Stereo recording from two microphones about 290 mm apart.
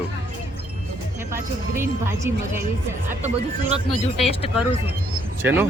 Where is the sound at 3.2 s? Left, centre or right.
Right.